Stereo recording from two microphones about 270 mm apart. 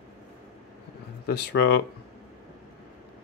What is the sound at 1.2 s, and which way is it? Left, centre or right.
Speech, left.